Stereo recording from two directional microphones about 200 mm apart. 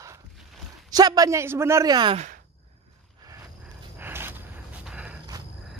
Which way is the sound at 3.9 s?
10° right (ahead or behind).